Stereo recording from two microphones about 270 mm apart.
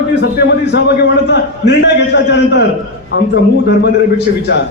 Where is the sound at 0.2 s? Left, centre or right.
Left.